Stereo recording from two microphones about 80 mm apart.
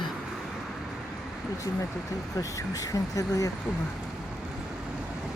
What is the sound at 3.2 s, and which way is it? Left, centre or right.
Speech, left.